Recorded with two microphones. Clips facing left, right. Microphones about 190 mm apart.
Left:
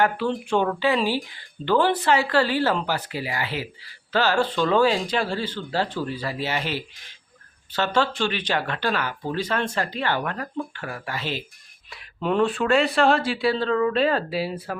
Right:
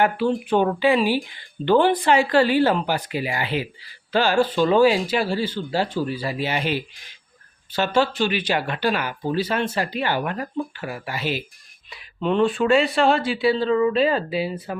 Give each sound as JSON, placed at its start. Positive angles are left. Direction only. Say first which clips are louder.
{"t": 0.0, "sound": "speech", "louder": "right 2 dB", "side_deg": -10}
{"t": 11.9, "sound": "speech", "louder": "right 2 dB", "side_deg": 0}